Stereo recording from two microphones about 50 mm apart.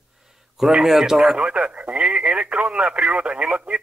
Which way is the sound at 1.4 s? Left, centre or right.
Right.